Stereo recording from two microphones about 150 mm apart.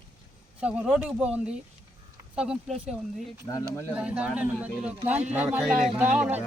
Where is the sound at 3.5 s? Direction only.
20° left (ahead or behind).